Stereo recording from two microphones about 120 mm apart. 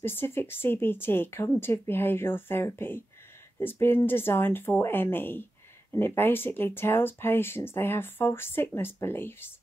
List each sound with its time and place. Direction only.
0.0 s speech: 20° left (ahead or behind)